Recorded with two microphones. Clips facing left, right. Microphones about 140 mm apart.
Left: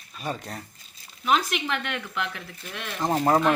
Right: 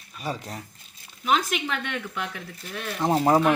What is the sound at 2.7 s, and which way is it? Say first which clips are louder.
Speech: right 2 dB; 5° right (ahead or behind).